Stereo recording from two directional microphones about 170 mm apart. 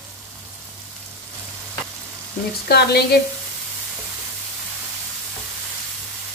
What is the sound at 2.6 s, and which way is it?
Speech, 70° left (ahead or behind).